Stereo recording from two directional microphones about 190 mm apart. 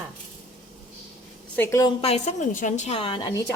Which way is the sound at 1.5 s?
15° left (ahead or behind).